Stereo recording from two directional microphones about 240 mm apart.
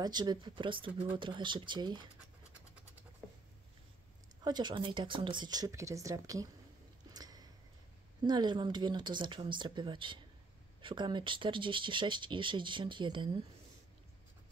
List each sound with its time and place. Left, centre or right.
0.0 s speech: centre
4.5 s speech: centre
7.2 s a sound: centre
8.2 s speech: centre